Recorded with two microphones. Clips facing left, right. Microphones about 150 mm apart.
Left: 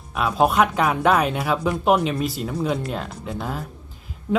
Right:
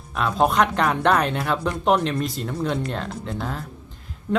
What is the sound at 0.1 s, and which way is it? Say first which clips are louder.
Speech: left 1 dB; 5° left (ahead or behind).